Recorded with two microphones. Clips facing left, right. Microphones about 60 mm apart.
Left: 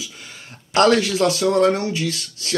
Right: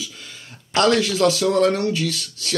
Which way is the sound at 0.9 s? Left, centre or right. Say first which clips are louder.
Even; centre.